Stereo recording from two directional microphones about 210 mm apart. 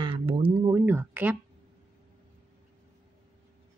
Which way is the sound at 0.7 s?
10° right (ahead or behind).